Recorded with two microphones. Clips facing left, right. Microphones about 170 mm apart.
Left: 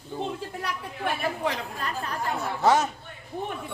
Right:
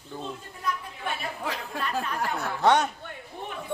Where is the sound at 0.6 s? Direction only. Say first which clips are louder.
Left 1 dB; 70° left (ahead or behind).